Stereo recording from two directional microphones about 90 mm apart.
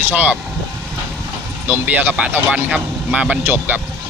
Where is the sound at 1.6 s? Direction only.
20° right (ahead or behind).